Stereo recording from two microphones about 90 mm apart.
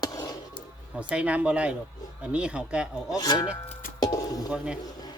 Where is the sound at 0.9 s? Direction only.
15° right (ahead or behind).